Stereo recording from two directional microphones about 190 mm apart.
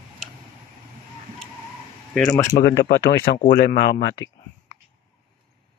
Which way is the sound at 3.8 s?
60° left (ahead or behind).